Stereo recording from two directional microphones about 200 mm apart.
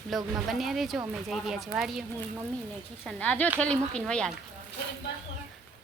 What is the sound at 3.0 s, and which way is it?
Speech, 5° left (ahead or behind).